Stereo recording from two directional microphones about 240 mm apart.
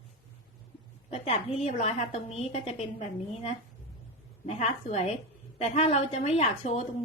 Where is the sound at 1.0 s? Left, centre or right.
Left.